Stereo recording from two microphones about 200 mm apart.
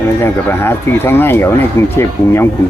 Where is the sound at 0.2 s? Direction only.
10° left (ahead or behind).